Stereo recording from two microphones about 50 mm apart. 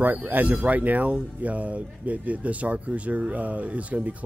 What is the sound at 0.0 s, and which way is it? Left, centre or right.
Speech, right.